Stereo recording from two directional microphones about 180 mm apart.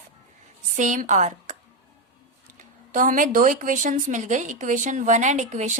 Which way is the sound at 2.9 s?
45° right (ahead or behind).